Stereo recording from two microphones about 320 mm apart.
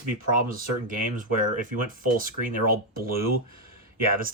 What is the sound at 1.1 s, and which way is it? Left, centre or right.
Speech, right.